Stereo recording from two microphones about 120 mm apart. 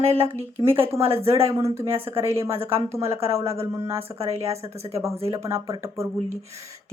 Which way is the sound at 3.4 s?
20° right (ahead or behind).